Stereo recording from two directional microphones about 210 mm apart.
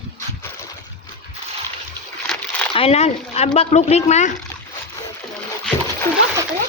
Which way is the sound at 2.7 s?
30° left (ahead or behind).